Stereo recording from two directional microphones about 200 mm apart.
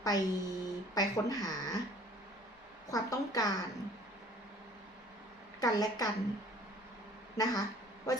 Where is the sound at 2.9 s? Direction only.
20° left (ahead or behind).